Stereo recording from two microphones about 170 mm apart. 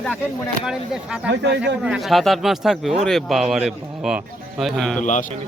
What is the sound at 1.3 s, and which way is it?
Speech, 90° right.